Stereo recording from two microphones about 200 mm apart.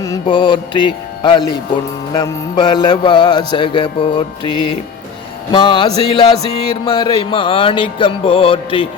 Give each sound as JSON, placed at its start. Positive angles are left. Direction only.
{"t": 0.0, "sound": "mantra", "side_deg": 20}
{"t": 2.1, "sound": "music", "side_deg": 20}